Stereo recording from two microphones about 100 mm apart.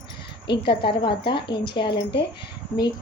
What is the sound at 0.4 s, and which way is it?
A woman's voice, 55° left (ahead or behind).